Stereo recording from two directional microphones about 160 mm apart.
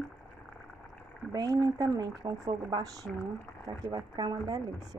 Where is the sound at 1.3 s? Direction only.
25° right (ahead or behind).